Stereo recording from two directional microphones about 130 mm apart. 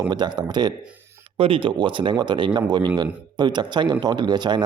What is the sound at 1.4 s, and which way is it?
A man's voice, 45° right (ahead or behind).